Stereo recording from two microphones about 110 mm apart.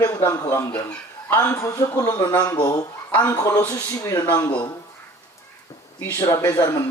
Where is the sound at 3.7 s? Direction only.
35° left (ahead or behind).